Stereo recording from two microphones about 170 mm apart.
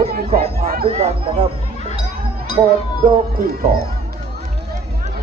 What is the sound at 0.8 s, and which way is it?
Speech, 35° right (ahead or behind).